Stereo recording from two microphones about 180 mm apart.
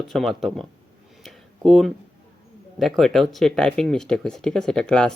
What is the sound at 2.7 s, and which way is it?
Speech, centre (ahead or behind).